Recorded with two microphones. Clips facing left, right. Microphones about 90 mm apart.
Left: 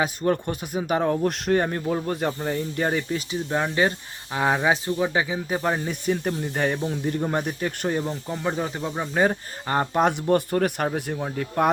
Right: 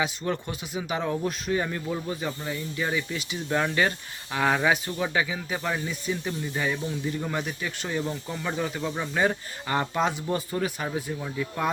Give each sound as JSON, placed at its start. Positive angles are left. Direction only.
{"t": 0.0, "sound": "speech", "side_deg": 45}
{"t": 1.3, "sound": "speech", "side_deg": 65}
{"t": 1.6, "sound": "speech", "side_deg": 40}
{"t": 3.5, "sound": "speech", "side_deg": 25}
{"t": 5.9, "sound": "speech", "side_deg": 50}
{"t": 8.3, "sound": "speech", "side_deg": 25}
{"t": 10.0, "sound": "speech", "side_deg": 55}
{"t": 11.2, "sound": "speech", "side_deg": 45}